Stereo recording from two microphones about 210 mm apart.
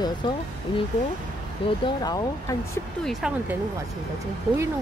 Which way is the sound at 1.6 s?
20° left (ahead or behind).